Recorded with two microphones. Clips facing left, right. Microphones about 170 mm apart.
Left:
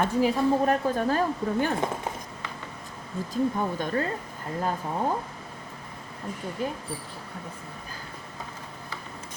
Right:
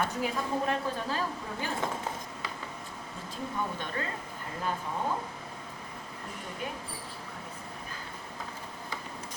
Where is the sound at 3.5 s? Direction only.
45° left (ahead or behind).